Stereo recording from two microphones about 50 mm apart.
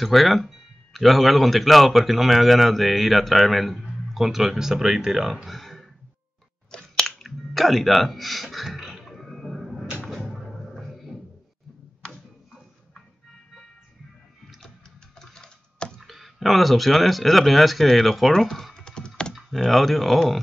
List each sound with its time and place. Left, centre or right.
0.0 s speech: centre
6.7 s chewing: centre
7.1 s finger snapping: centre
10.0 s music: centre
15.1 s typing: centre
16.0 s speech: centre
18.3 s typing: centre
19.3 s speech: centre